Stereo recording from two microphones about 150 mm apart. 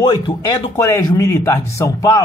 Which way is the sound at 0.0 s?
25° left (ahead or behind).